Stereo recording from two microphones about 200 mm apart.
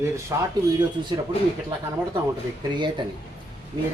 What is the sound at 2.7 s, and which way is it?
Speech, 25° right (ahead or behind).